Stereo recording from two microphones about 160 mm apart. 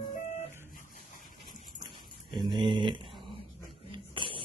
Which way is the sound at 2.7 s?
30° right (ahead or behind).